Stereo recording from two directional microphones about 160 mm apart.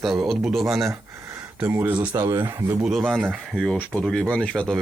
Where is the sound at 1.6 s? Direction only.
10° right (ahead or behind).